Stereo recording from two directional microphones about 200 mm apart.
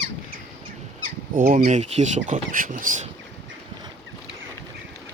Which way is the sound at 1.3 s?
45° right (ahead or behind).